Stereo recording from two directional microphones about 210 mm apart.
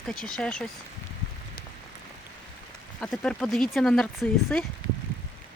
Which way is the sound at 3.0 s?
5° left (ahead or behind).